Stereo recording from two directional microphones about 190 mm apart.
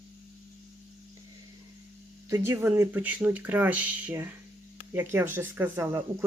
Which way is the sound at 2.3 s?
15° right (ahead or behind).